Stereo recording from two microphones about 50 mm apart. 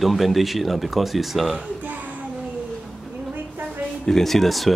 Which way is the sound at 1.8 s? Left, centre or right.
Right.